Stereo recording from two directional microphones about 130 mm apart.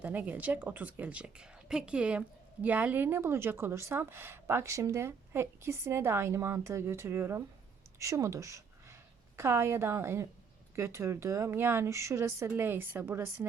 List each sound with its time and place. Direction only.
0.0 s a woman's voice: 15° right (ahead or behind)